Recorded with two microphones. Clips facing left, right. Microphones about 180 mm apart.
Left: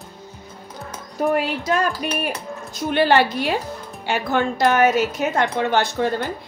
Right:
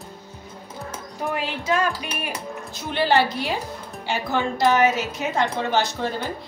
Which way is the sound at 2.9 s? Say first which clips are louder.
Left 3 dB; 60° left (ahead or behind).